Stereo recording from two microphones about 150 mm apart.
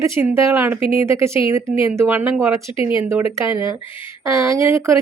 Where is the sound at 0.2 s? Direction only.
20° right (ahead or behind).